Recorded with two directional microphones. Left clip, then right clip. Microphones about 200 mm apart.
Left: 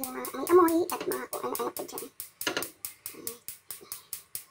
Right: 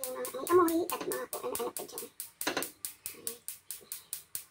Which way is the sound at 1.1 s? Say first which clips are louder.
Left 4 dB; 30° left (ahead or behind).